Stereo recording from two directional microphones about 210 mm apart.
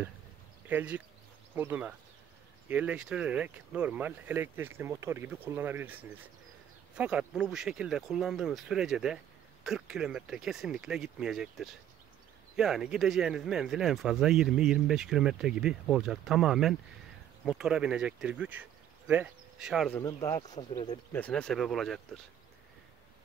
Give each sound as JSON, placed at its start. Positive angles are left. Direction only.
{"t": 0.7, "sound": "speech", "side_deg": -5}
{"t": 19.9, "sound": "speech", "side_deg": 15}
{"t": 21.1, "sound": "speech", "side_deg": 5}